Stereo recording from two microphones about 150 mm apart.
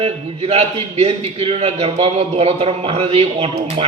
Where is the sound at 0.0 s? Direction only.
45° right (ahead or behind).